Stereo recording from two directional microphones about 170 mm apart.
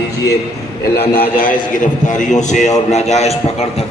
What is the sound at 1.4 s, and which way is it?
A man's voice, 50° left (ahead or behind).